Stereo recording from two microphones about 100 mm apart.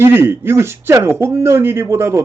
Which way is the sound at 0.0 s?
20° right (ahead or behind).